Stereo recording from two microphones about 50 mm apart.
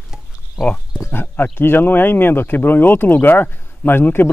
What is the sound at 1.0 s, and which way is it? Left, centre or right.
Speech, left.